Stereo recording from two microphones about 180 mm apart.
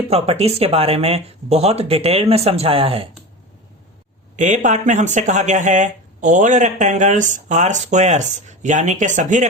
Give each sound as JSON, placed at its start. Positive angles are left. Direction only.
{"t": 0.1, "sound": "speech", "side_deg": -35}
{"t": 4.4, "sound": "speech", "side_deg": -40}